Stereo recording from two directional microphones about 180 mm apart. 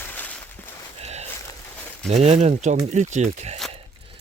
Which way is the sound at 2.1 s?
35° right (ahead or behind).